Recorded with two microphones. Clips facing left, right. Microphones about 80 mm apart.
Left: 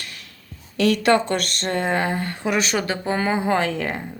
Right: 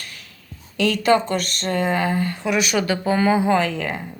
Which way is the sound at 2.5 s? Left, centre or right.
Left.